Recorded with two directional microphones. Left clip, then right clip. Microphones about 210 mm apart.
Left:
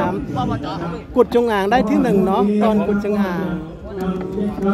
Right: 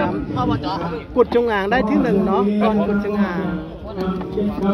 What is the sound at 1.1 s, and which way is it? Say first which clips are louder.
A man's voice: left 1 dB; 25° left (ahead or behind).